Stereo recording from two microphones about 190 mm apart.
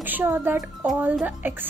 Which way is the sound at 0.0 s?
10° right (ahead or behind).